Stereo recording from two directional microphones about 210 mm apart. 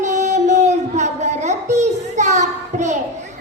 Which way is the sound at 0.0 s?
35° right (ahead or behind).